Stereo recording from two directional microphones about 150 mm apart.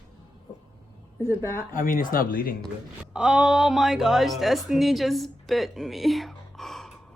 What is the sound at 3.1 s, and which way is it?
A woman's voice, 5° right (ahead or behind).